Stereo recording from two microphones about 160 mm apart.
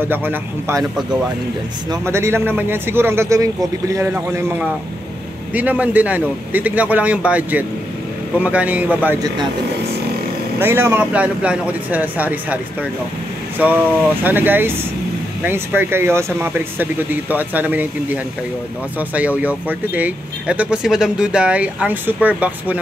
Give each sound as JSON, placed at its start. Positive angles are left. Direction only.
{"t": 0.0, "sound": "speech", "side_deg": -10}
{"t": 1.9, "sound": "speech", "side_deg": -15}
{"t": 10.6, "sound": "speech", "side_deg": -15}
{"t": 13.6, "sound": "speech", "side_deg": -10}